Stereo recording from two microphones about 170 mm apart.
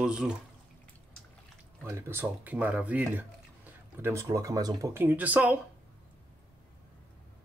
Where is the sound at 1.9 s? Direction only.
15° right (ahead or behind).